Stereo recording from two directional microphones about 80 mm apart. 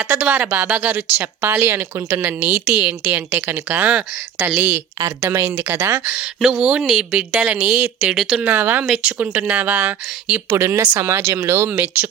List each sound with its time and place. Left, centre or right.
0.1 s speech: centre
5.3 s speech: right
6.4 s speech: centre
8.4 s speech: right
10.5 s speech: right
11.7 s speech: right